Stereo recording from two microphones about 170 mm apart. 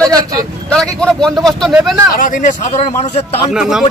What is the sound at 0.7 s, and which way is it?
Speech, 5° left (ahead or behind).